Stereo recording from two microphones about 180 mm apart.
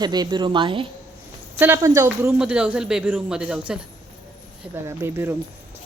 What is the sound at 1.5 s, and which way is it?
Speech, 15° right (ahead or behind).